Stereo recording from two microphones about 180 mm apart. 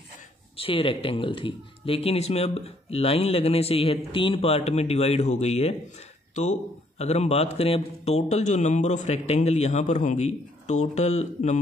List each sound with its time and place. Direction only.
0.6 s speech: 30° left (ahead or behind)